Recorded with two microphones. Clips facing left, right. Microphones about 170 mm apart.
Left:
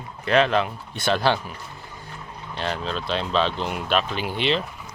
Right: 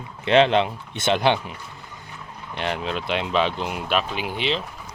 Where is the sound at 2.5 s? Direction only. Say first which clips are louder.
Right 1 dB; 20° right (ahead or behind).